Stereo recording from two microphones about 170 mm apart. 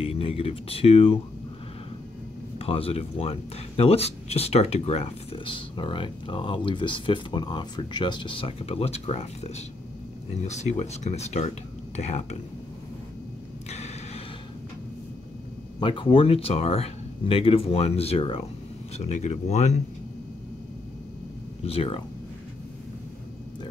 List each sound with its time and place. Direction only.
0.0 s speech: 35° left (ahead or behind)
2.6 s speech: 35° left (ahead or behind)
13.7 s a sound: 40° left (ahead or behind)
15.8 s speech: 30° left (ahead or behind)
21.6 s speech: 35° left (ahead or behind)